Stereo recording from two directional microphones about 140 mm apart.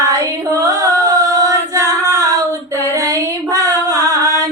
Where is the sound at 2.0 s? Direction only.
25° right (ahead or behind).